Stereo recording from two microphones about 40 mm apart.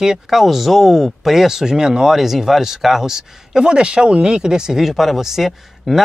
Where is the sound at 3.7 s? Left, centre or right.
Right.